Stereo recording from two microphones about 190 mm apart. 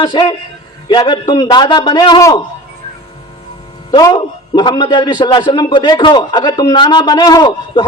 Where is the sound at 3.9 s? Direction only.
20° left (ahead or behind).